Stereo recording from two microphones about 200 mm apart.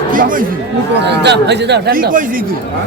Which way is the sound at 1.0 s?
60° right (ahead or behind).